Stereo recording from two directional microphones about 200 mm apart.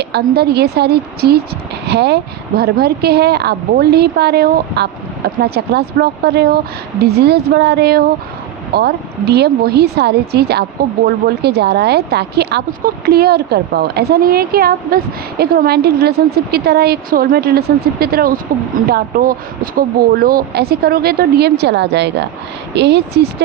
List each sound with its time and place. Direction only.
0.0 s a woman's voice: 55° right (ahead or behind)